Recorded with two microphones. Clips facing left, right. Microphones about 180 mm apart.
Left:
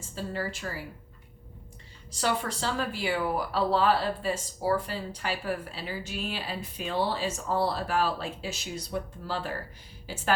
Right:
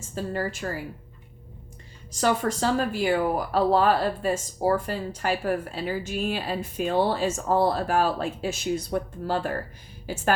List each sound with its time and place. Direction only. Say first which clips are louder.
0.1 s speech: right 5 dB; 45° right (ahead or behind)
2.2 s speech: right 6 dB; 45° right (ahead or behind)